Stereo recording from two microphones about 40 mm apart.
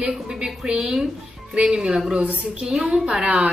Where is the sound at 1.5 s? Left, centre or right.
Right.